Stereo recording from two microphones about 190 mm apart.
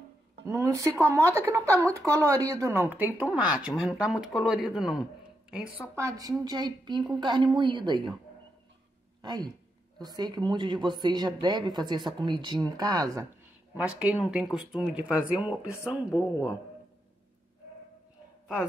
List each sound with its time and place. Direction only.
0.5 s speech: 15° right (ahead or behind)
5.8 s a woman's voice: 15° right (ahead or behind)
9.2 s a woman's voice: 20° right (ahead or behind)
13.7 s speech: 10° right (ahead or behind)
16.1 s speech: 15° left (ahead or behind)